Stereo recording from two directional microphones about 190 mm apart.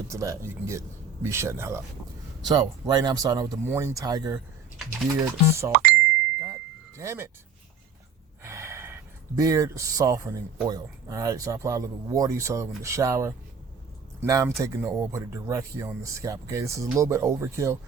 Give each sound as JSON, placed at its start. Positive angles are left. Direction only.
{"t": 0.1, "sound": "speech", "side_deg": -15}
{"t": 6.4, "sound": "a sound", "side_deg": -15}
{"t": 8.4, "sound": "speech", "side_deg": -15}